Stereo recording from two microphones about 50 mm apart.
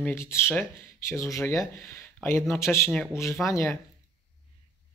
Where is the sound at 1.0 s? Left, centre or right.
Left.